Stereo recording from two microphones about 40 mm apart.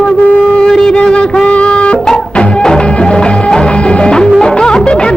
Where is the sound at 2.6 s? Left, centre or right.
Centre.